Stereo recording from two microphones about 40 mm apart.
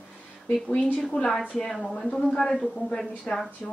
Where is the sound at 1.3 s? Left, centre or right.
Centre.